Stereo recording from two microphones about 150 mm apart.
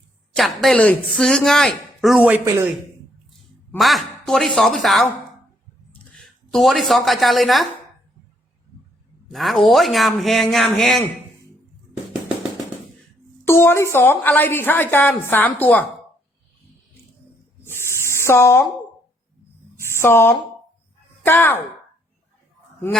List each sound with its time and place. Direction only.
0.3 s a woman's voice: centre (ahead or behind); by 2.6 s 15° right (ahead or behind)
3.8 s a woman's voice: centre (ahead or behind)
6.5 s a woman's voice: centre (ahead or behind)
9.3 s a woman's voice: centre (ahead or behind)
13.4 s a woman's voice: 15° left (ahead or behind)
17.6 s spray: 15° left (ahead or behind)
19.8 s a sound: 15° left (ahead or behind)
21.2 s a woman's voice: 15° left (ahead or behind)